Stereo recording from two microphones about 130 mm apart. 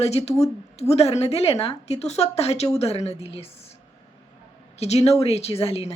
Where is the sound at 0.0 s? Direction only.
55° left (ahead or behind).